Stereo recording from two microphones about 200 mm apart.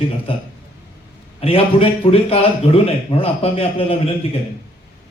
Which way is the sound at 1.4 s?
30° left (ahead or behind).